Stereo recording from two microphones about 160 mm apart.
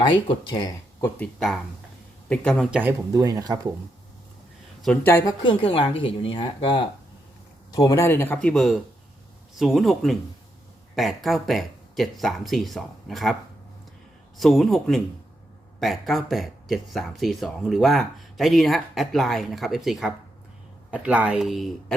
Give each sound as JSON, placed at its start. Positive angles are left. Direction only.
{"t": 0.0, "sound": "speech", "side_deg": 30}
{"t": 2.3, "sound": "speech", "side_deg": 5}
{"t": 3.1, "sound": "speech", "side_deg": -25}
{"t": 4.8, "sound": "speech", "side_deg": 10}
{"t": 5.4, "sound": "speech", "side_deg": 35}
{"t": 14.3, "sound": "speech", "side_deg": 0}